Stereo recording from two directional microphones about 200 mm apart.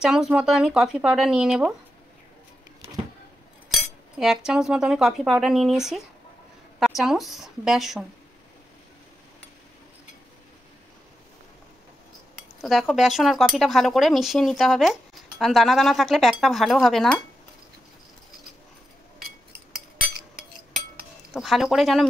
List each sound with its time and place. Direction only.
0.0 s speech: 5° right (ahead or behind)
3.7 s cutlery: centre (ahead or behind)
7.0 s speech: centre (ahead or behind)
12.6 s speech: centre (ahead or behind)
19.5 s cutlery: 50° right (ahead or behind)
21.3 s speech: centre (ahead or behind)